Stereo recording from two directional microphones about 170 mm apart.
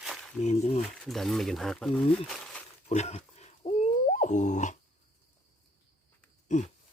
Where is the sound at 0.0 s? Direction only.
Centre (ahead or behind).